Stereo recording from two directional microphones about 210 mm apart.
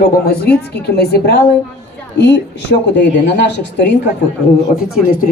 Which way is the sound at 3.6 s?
55° left (ahead or behind).